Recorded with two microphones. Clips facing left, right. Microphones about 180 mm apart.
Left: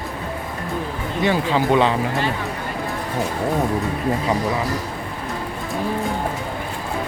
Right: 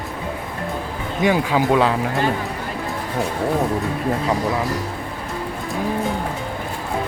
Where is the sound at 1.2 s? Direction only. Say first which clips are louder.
Right 1 dB; 10° right (ahead or behind).